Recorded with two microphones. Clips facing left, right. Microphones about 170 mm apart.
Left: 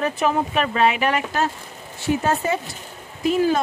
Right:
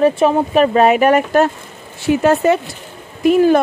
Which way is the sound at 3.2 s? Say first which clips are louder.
Right 8 dB; 60° right (ahead or behind).